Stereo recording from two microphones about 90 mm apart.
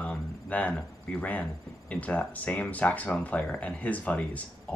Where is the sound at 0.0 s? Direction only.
15° left (ahead or behind).